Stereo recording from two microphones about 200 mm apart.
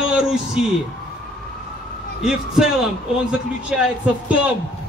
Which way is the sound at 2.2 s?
5° right (ahead or behind).